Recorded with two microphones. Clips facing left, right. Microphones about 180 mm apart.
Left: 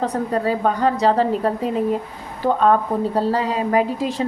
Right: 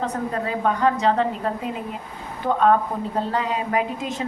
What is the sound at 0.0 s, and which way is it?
Speech, 35° left (ahead or behind).